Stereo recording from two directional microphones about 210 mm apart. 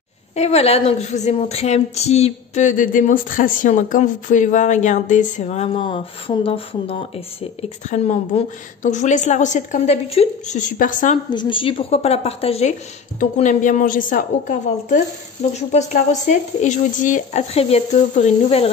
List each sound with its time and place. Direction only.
0.4 s a woman's voice: 30° left (ahead or behind)
11.2 s a woman's voice: 20° left (ahead or behind)